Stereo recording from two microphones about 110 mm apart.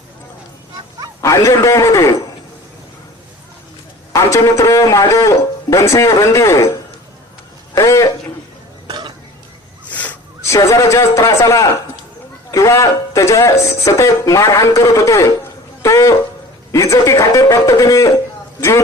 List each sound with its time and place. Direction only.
1.2 s speech: 30° left (ahead or behind)
4.1 s speech: 30° left (ahead or behind)
7.8 s a man's voice: 30° left (ahead or behind)
8.9 s cough: 45° right (ahead or behind)
9.9 s a sound: 15° left (ahead or behind)
10.4 s speech: 25° left (ahead or behind)